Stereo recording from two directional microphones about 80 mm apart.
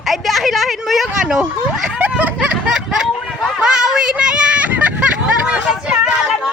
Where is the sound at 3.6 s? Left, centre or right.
Centre.